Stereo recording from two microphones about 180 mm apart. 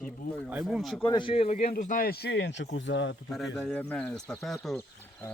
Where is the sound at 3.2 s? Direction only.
Centre (ahead or behind).